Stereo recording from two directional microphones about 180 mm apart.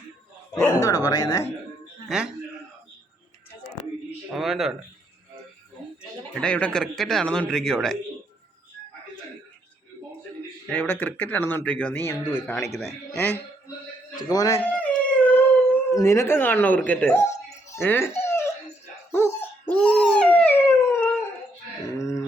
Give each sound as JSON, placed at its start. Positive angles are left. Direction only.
{"t": 0.5, "sound": "speech", "side_deg": 15}
{"t": 2.0, "sound": "speech", "side_deg": -5}
{"t": 4.3, "sound": "a sound", "side_deg": 0}
{"t": 6.0, "sound": "speech", "side_deg": 5}
{"t": 10.7, "sound": "speech", "side_deg": 10}
{"t": 12.7, "sound": "speech", "side_deg": 0}
{"t": 13.1, "sound": "speech", "side_deg": 10}
{"t": 14.6, "sound": "howl", "side_deg": 10}
{"t": 15.9, "sound": "speech", "side_deg": 15}
{"t": 17.7, "sound": "music", "side_deg": 15}
{"t": 19.1, "sound": "dog", "side_deg": 10}
{"t": 22.0, "sound": "a sound", "side_deg": 15}